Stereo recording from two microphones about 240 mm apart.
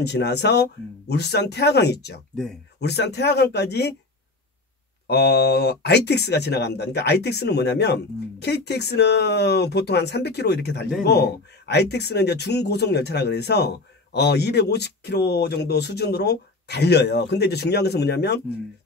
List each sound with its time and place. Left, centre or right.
0.0 s speech: left
5.0 s speech: left